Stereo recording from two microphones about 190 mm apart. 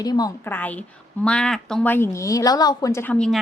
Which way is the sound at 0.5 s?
10° left (ahead or behind).